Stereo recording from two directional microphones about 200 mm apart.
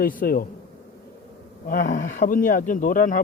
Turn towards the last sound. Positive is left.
turn(degrees=40)  # may be behind; listen again after turning